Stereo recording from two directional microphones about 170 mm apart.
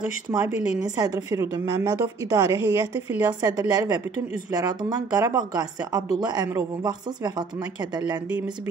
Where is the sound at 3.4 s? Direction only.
25° right (ahead or behind).